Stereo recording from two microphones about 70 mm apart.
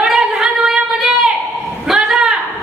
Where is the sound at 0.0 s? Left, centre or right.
Centre.